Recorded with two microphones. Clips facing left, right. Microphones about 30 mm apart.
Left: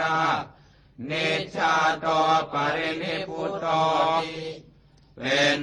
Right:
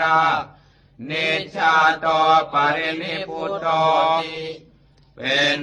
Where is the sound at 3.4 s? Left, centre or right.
Right.